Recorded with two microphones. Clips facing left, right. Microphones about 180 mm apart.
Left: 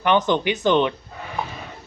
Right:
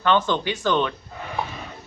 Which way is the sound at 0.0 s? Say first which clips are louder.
Left 2 dB; 15° left (ahead or behind).